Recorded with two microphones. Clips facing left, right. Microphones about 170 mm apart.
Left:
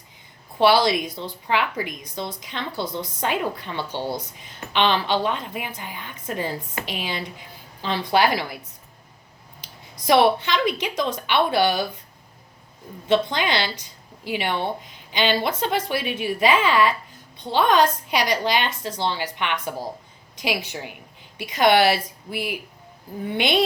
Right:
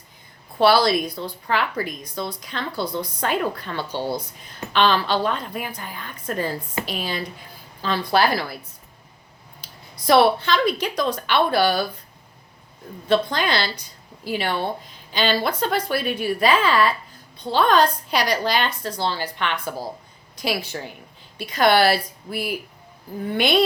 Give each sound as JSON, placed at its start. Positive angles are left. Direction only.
{"t": 0.6, "sound": "a woman's voice", "side_deg": 20}
{"t": 10.1, "sound": "a woman's voice", "side_deg": 15}
{"t": 13.1, "sound": "a woman's voice", "side_deg": 20}